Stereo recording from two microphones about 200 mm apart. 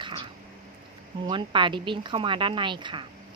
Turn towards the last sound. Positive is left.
turn(degrees=-25)  # may be behind; listen again after turning